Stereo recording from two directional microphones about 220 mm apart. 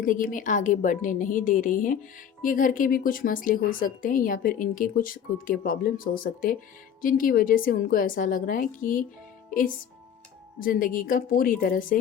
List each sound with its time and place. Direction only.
0.0 s speech: 40° left (ahead or behind)
10.6 s speech: 40° left (ahead or behind)